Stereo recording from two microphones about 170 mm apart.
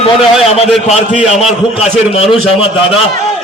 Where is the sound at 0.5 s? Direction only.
40° left (ahead or behind).